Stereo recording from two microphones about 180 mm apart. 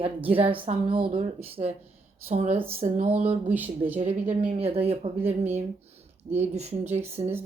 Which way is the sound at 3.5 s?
10° right (ahead or behind).